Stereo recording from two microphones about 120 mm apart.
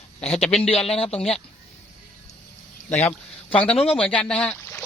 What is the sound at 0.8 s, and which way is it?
Speech, 5° left (ahead or behind).